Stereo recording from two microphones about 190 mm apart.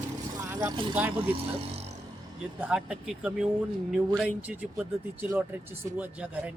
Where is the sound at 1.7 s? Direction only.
35° right (ahead or behind).